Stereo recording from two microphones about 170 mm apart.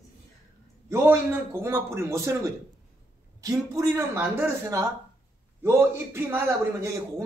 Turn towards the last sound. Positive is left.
turn(degrees=-15)  # may be behind; listen again after turning